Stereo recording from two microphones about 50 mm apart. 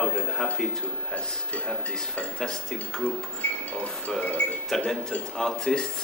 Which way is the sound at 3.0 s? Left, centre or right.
Left.